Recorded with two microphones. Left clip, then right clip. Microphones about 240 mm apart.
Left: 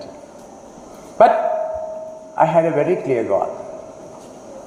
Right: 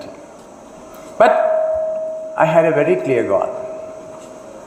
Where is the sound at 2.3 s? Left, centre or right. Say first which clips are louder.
Right 2 dB; right.